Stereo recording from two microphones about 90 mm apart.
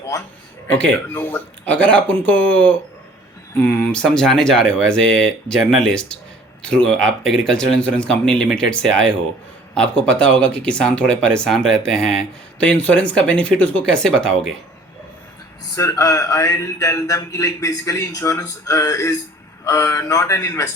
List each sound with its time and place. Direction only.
0.7 s speech: 20° left (ahead or behind)
15.7 s speech: 35° left (ahead or behind)